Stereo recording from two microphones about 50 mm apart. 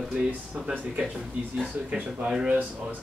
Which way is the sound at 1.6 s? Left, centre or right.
Right.